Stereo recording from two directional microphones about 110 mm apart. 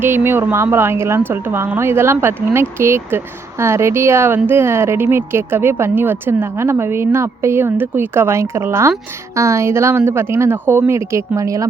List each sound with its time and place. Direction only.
0.0 s a woman's voice: 20° right (ahead or behind)